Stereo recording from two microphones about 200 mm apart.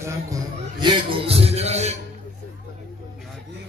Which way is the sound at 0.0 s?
20° right (ahead or behind).